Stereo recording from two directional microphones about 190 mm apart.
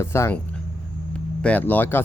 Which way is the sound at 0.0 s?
15° left (ahead or behind).